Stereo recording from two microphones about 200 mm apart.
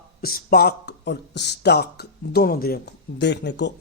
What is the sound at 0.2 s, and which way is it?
Speech, 50° left (ahead or behind).